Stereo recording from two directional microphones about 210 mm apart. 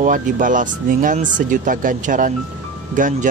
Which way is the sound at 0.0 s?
40° right (ahead or behind).